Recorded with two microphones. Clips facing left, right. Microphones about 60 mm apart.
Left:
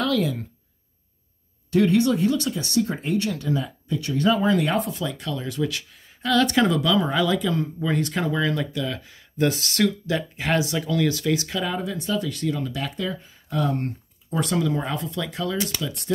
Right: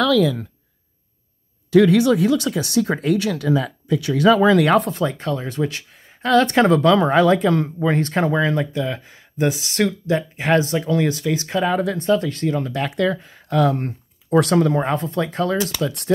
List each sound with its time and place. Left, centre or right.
2.0 s speech: right
4.9 s speech: right
7.8 s speech: right
9.5 s speech: centre
9.8 s speech: right
11.7 s speech: right
12.9 s speech: right
14.3 s speech: right
14.7 s speech: right
15.8 s speech: right